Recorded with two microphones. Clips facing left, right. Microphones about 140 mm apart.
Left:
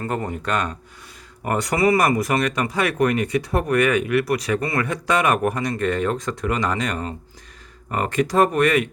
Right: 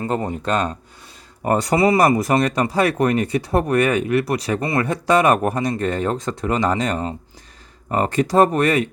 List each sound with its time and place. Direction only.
0.0 s speech: 20° right (ahead or behind)